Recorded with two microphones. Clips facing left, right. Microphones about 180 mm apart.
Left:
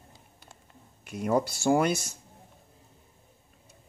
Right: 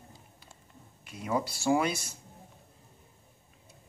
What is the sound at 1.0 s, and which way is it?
Speech, 50° left (ahead or behind).